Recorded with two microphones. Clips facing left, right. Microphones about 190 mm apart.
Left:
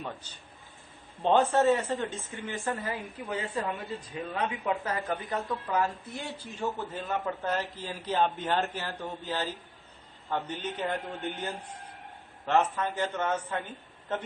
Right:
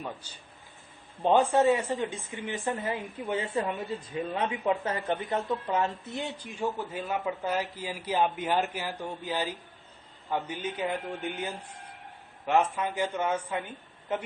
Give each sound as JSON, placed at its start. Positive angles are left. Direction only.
{"t": 1.2, "sound": "a woman's voice", "side_deg": -10}